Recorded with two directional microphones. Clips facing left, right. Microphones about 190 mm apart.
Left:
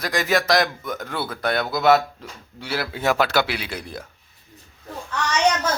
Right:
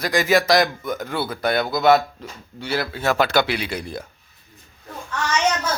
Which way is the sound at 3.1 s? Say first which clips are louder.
Right 2 dB; 5° left (ahead or behind).